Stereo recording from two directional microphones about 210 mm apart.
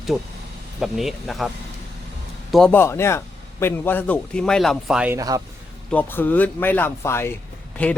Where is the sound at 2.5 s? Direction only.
5° left (ahead or behind); by 5.4 s 15° right (ahead or behind).